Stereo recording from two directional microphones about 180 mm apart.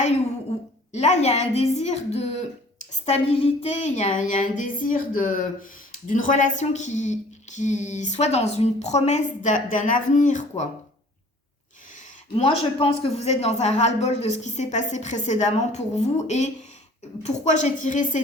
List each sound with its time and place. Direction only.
0.9 s a woman's voice: 40° left (ahead or behind)
12.4 s a woman's voice: 30° left (ahead or behind)